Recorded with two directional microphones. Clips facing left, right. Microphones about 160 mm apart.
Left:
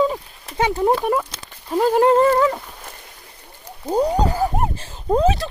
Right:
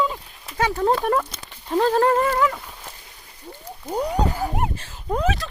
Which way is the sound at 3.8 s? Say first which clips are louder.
Left 6 dB; 30° left (ahead or behind).